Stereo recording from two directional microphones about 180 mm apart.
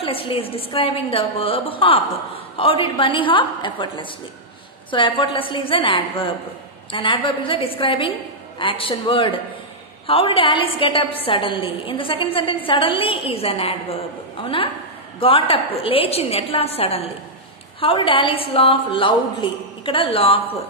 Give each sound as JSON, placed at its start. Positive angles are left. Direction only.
{"t": 0.0, "sound": "a woman's voice", "side_deg": 30}